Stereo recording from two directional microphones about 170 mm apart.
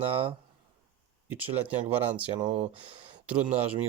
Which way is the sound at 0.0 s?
35° right (ahead or behind).